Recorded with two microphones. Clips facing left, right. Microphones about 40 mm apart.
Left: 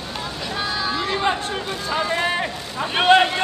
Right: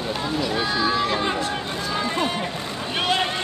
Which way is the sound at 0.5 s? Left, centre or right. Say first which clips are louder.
Even; centre.